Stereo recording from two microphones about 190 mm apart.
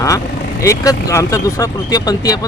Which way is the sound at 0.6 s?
15° left (ahead or behind).